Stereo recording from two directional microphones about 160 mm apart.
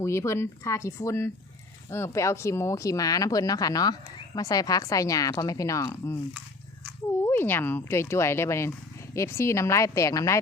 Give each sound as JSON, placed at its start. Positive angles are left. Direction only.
{"t": 0.0, "sound": "speech", "side_deg": 20}
{"t": 7.3, "sound": "speech", "side_deg": 15}